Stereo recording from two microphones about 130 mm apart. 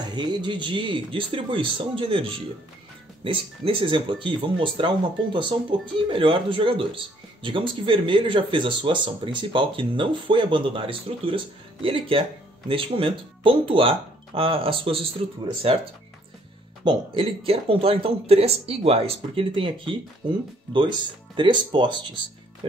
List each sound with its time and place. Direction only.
0.0 s speech: 35° right (ahead or behind)